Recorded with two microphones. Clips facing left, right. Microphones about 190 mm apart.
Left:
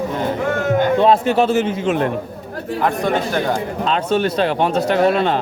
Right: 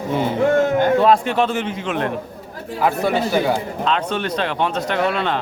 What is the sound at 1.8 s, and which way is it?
Speech, 40° left (ahead or behind).